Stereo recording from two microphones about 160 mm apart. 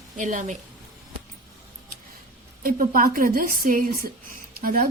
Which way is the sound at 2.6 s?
60° right (ahead or behind).